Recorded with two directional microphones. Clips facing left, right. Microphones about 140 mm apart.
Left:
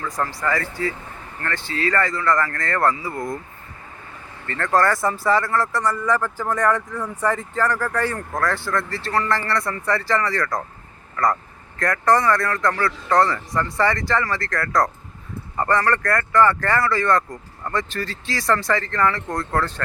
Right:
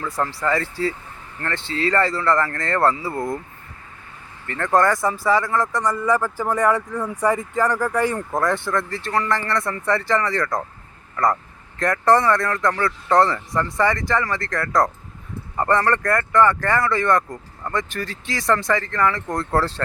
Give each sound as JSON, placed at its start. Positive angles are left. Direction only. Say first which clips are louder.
{"t": 0.3, "sound": "speech", "louder": "right 2 dB", "side_deg": -25}
{"t": 4.4, "sound": "speech", "louder": "right 1 dB", "side_deg": -10}
{"t": 11.8, "sound": "speech", "louder": "right 2 dB", "side_deg": -25}
{"t": 19.5, "sound": "speech", "louder": "right 3 dB", "side_deg": -30}